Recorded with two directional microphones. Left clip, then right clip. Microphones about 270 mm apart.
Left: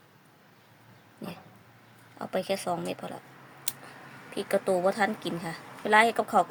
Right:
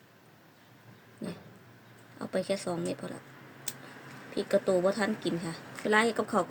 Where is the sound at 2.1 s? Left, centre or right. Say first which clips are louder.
Left 2 dB; left.